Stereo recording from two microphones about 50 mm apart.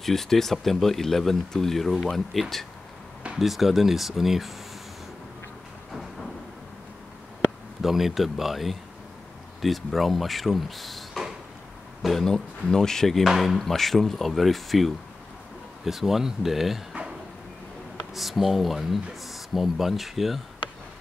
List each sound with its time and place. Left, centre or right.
0.0 s speech: centre
7.8 s speech: centre
18.1 s speech: centre